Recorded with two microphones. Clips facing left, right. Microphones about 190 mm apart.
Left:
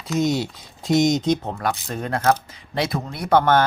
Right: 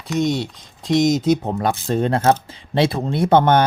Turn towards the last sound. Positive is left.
turn(degrees=-20)  # may be behind; listen again after turning